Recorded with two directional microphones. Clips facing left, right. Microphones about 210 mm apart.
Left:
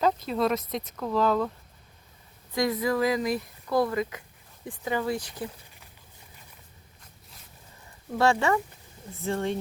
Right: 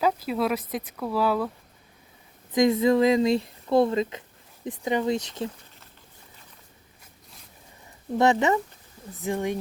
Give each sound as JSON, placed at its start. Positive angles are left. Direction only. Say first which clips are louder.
{"t": 0.0, "sound": "speech", "louder": "even", "side_deg": -5}
{"t": 2.5, "sound": "speech", "louder": "right 6 dB", "side_deg": -20}
{"t": 8.2, "sound": "speech", "louder": "right 2 dB", "side_deg": -20}